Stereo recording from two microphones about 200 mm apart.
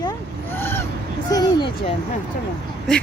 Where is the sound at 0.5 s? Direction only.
10° left (ahead or behind).